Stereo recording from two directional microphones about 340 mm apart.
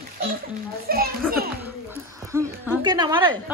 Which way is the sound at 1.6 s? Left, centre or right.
Centre.